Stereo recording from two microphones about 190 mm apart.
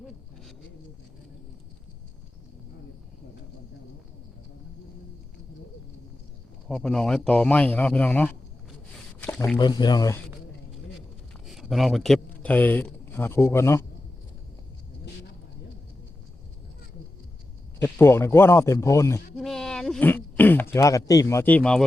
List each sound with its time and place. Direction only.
6.7 s speech: 5° left (ahead or behind)
9.6 s speech: 20° left (ahead or behind)
11.4 s speech: centre (ahead or behind)
17.8 s speech: 15° left (ahead or behind)
19.4 s sheep: centre (ahead or behind)
20.7 s speech: 15° left (ahead or behind)